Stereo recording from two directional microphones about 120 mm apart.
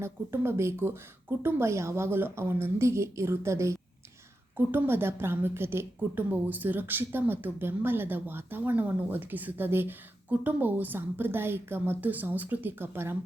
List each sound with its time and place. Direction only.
0.0 s a woman's voice: 20° right (ahead or behind)